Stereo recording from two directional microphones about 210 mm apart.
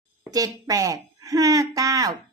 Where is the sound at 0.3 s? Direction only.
15° right (ahead or behind).